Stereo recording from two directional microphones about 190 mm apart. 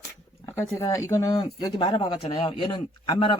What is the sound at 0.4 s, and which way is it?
Speech, 15° left (ahead or behind).